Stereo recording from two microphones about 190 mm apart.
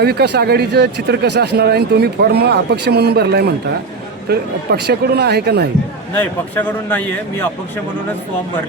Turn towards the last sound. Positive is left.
turn(degrees=10)  # may be behind; listen again after turning